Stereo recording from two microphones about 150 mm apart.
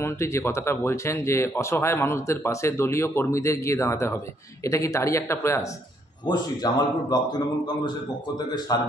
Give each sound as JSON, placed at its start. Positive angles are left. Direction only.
{"t": 0.0, "sound": "speech", "side_deg": 20}